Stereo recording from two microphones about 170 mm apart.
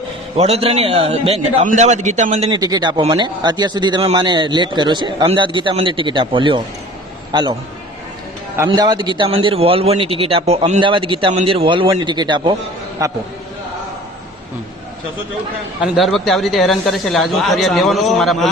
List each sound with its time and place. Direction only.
0.3 s a man's voice: 40° right (ahead or behind)
2.5 s a man's voice: 20° right (ahead or behind)
8.5 s a man's voice: 20° right (ahead or behind)
15.8 s speech: centre (ahead or behind)